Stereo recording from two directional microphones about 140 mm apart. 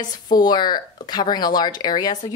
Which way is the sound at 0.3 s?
30° left (ahead or behind).